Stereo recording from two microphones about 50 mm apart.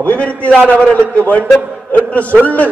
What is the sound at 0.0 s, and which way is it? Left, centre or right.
Speech, left.